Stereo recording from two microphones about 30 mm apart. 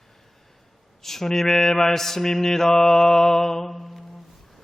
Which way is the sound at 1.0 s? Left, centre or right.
Centre.